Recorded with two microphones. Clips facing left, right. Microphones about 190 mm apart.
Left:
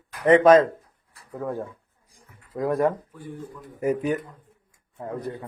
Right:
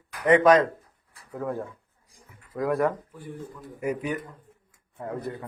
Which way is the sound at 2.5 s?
20° left (ahead or behind).